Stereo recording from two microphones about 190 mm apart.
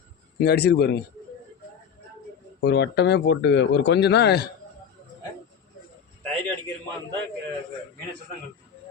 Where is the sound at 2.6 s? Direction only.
60° left (ahead or behind).